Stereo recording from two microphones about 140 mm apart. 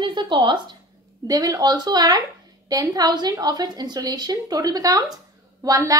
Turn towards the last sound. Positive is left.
turn(degrees=-25)  # may be behind; listen again after turning